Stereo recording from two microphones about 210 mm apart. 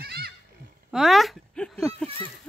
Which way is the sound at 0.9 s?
Centre (ahead or behind).